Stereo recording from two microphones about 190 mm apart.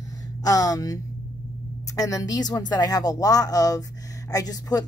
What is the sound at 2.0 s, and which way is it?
Speech, 20° left (ahead or behind).